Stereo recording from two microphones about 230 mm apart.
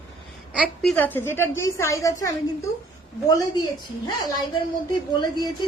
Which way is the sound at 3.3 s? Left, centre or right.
Centre.